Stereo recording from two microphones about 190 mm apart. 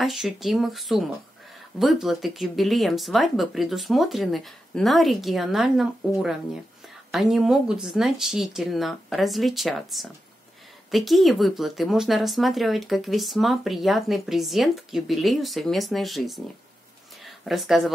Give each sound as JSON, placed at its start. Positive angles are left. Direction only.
{"t": 0.0, "sound": "speech", "side_deg": 0}